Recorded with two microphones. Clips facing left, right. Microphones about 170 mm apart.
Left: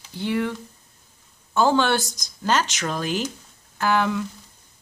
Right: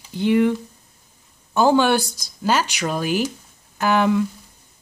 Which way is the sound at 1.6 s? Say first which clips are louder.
Right 3 dB; 15° right (ahead or behind).